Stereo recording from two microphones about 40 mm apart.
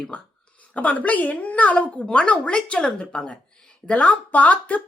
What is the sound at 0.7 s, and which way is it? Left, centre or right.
A woman's voice, left.